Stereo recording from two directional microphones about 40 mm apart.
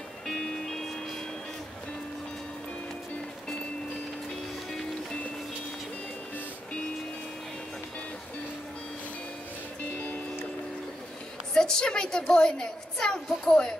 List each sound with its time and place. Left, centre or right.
0.3 s music: centre
11.5 s a woman's voice: centre